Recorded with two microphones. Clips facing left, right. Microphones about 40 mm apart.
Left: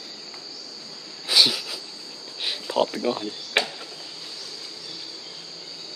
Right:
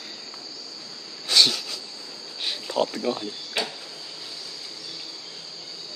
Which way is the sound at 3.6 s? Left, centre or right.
Left.